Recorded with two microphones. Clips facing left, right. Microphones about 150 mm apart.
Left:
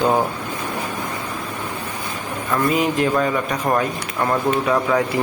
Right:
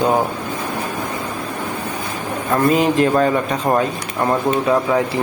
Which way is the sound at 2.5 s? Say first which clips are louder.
Right 4 dB; 30° right (ahead or behind).